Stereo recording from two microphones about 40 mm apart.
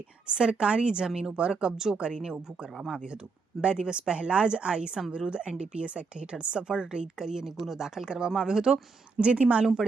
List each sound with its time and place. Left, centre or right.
0.3 s a woman's voice: right
2.7 s speech: centre
3.6 s a woman's voice: right